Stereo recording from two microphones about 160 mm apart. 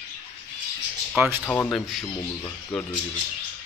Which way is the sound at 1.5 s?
15° left (ahead or behind).